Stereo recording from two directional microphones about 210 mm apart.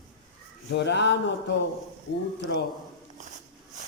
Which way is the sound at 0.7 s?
55° left (ahead or behind).